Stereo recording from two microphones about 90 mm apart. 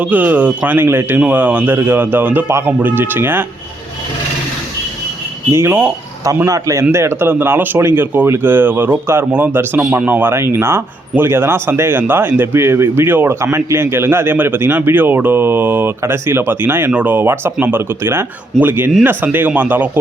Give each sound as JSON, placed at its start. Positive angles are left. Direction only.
{"t": 0.0, "sound": "speech", "side_deg": -20}
{"t": 5.5, "sound": "speech", "side_deg": -30}
{"t": 6.5, "sound": "a man's voice", "side_deg": -35}